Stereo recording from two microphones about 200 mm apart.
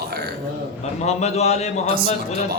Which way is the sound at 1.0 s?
35° left (ahead or behind).